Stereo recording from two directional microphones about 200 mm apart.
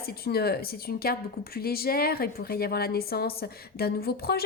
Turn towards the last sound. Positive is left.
turn(degrees=50)  # may be behind; listen again after turning